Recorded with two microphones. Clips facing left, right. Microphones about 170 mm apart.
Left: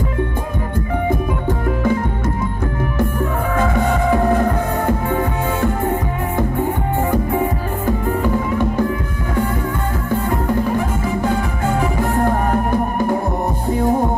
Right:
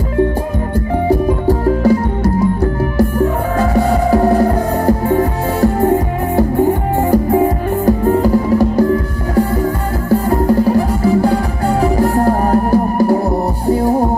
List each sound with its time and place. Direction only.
0.7 s music: 35° right (ahead or behind)
10.0 s music: 35° right (ahead or behind)